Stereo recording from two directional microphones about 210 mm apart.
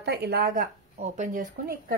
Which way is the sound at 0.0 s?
50° right (ahead or behind).